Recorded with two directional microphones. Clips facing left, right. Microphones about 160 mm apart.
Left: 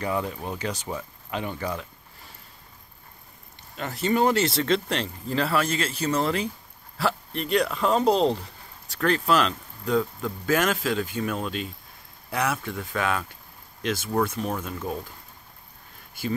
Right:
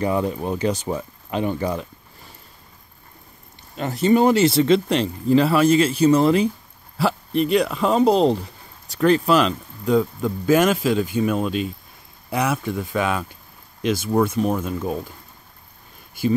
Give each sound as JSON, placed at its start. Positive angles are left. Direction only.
{"t": 0.0, "sound": "speech", "side_deg": -25}
{"t": 0.7, "sound": "speech", "side_deg": -20}
{"t": 3.7, "sound": "speech", "side_deg": -20}
{"t": 16.2, "sound": "speech", "side_deg": -15}